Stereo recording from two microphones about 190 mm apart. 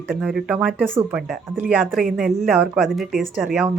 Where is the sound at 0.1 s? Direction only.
Centre (ahead or behind).